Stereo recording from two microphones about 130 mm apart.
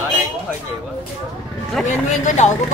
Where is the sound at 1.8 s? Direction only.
70° left (ahead or behind).